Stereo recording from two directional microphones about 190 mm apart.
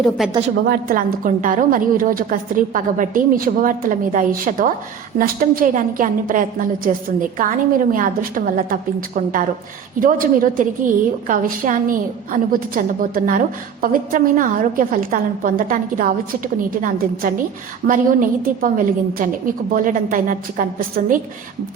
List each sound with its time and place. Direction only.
0.2 s a woman's voice: centre (ahead or behind)
0.6 s a woman's voice: 50° right (ahead or behind)